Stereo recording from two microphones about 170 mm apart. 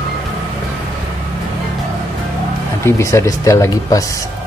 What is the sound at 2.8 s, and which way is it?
Speech, 15° left (ahead or behind).